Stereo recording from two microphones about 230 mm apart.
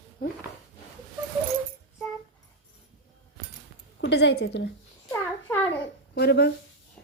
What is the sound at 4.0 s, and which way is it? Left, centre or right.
Speech, left.